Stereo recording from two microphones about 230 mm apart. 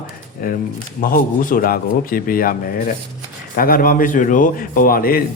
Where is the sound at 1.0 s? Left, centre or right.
Left.